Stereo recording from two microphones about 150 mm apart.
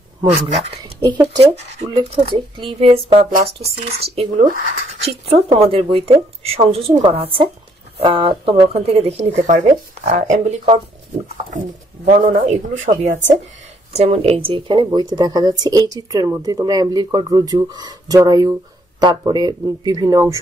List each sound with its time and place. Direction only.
0.3 s speech: 45° right (ahead or behind)
1.0 s speech: 25° right (ahead or behind)
1.4 s speech: 45° right (ahead or behind)
1.9 s speech: 30° right (ahead or behind)